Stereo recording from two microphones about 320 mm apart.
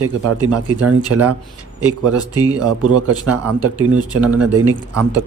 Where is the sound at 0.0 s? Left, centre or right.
Right.